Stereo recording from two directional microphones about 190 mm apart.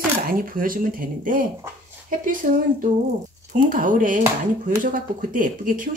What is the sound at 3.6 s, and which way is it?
Speech, 45° right (ahead or behind).